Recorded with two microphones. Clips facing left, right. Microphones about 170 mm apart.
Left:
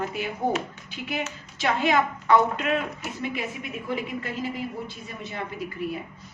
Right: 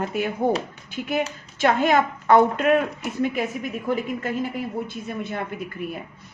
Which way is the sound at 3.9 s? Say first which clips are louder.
Right 5 dB; 50° right (ahead or behind).